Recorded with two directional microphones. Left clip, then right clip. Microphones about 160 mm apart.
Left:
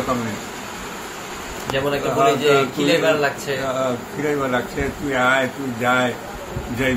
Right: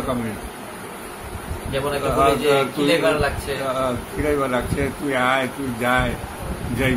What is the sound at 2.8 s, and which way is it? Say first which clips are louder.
Speech: even; 35° left (ahead or behind).